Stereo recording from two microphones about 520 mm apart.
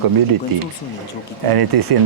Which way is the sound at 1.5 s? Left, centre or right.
Right.